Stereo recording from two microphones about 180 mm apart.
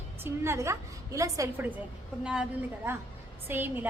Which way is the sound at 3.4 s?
10° right (ahead or behind).